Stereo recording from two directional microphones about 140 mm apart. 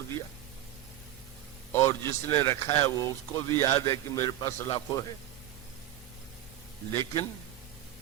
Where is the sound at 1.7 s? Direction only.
15° left (ahead or behind).